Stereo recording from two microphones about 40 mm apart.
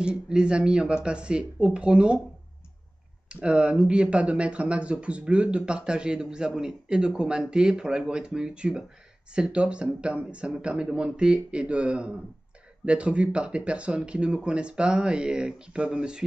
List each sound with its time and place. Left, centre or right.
0.0 s a man's voice: right
3.3 s a man's voice: right